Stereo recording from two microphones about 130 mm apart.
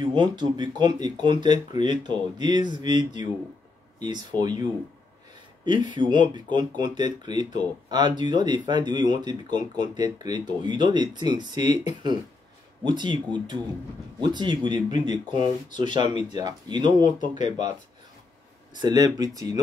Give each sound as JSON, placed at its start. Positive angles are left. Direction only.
{"t": 0.0, "sound": "speech", "side_deg": -35}
{"t": 4.4, "sound": "speech", "side_deg": -30}
{"t": 5.7, "sound": "speech", "side_deg": -35}
{"t": 18.8, "sound": "speech", "side_deg": -30}